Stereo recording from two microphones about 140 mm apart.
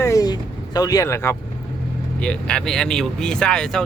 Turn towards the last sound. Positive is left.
turn(degrees=5)  # may be behind; listen again after turning